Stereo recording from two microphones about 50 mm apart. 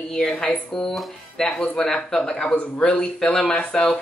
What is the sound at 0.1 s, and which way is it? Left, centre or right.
Speech, centre.